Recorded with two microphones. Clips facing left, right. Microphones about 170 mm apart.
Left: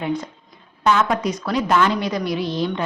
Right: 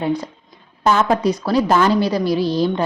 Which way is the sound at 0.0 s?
35° right (ahead or behind).